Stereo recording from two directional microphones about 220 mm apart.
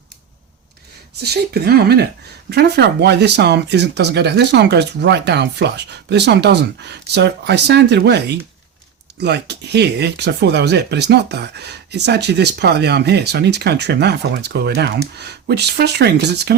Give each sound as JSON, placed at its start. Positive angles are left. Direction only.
{"t": 1.2, "sound": "speech", "side_deg": -45}